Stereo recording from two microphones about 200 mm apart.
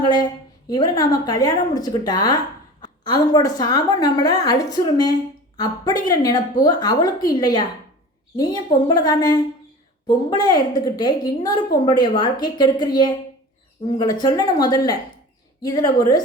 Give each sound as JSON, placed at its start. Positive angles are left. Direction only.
{"t": 0.0, "sound": "a woman's voice", "side_deg": 20}
{"t": 8.9, "sound": "a woman's voice", "side_deg": 20}